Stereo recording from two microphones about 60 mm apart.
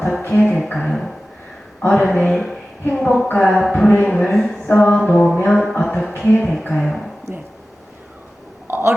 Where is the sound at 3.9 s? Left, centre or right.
Left.